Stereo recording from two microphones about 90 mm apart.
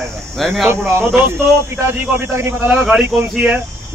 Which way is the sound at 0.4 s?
Centre (ahead or behind).